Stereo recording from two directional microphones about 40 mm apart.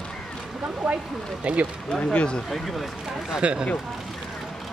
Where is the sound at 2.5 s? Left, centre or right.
Centre.